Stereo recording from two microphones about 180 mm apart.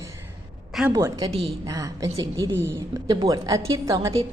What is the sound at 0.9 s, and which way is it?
A woman's voice, 20° right (ahead or behind).